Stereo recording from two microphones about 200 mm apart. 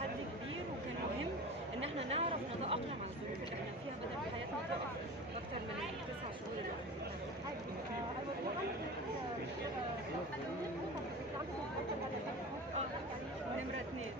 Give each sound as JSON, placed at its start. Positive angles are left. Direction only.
{"t": 1.8, "sound": "chatter", "side_deg": -30}